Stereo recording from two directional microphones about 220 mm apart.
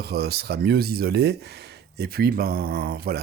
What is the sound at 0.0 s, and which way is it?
Speech, 45° right (ahead or behind).